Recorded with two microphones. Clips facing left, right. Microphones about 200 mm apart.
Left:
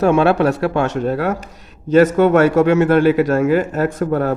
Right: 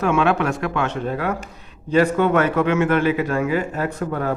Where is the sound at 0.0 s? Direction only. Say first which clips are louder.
Left 5 dB; 40° left (ahead or behind).